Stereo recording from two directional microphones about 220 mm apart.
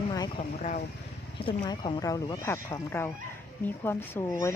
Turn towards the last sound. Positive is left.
turn(degrees=10)  # may be behind; listen again after turning